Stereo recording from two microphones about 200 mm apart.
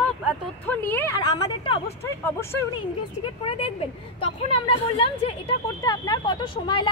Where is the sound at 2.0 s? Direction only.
10° left (ahead or behind).